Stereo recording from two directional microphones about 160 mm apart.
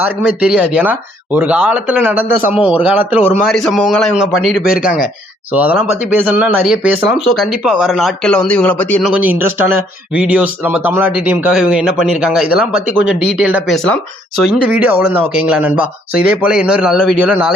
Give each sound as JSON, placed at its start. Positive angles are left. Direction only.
{"t": 0.0, "sound": "speech", "side_deg": -10}
{"t": 3.5, "sound": "speech", "side_deg": 0}
{"t": 4.7, "sound": "speech", "side_deg": 65}
{"t": 5.5, "sound": "speech", "side_deg": -10}
{"t": 9.1, "sound": "speech", "side_deg": -10}
{"t": 13.7, "sound": "speech", "side_deg": 5}
{"t": 14.7, "sound": "speech", "side_deg": -10}